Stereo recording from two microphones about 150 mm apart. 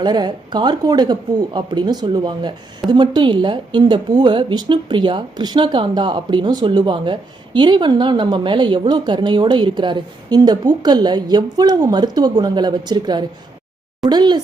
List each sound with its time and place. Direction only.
0.0 s a woman's voice: 30° right (ahead or behind)